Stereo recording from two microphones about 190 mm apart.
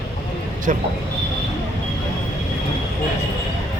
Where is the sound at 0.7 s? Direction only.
40° right (ahead or behind).